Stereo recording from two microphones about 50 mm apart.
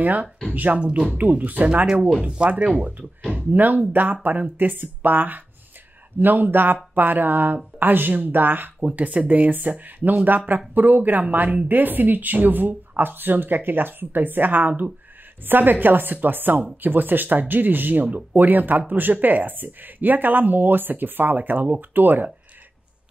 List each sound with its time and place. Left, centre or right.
0.0 s speech: right
0.7 s speech: right
1.1 s speech: right